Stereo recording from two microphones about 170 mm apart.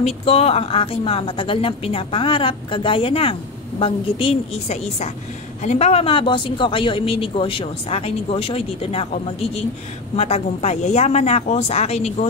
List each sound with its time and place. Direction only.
0.0 s speech: 35° left (ahead or behind)